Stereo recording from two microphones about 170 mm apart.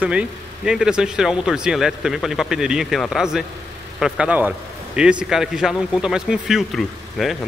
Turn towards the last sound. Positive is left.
turn(degrees=0)  # may be behind; listen again after turning